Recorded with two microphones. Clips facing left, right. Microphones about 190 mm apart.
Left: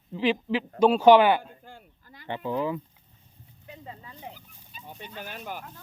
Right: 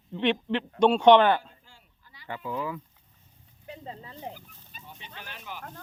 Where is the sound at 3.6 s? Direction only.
30° right (ahead or behind).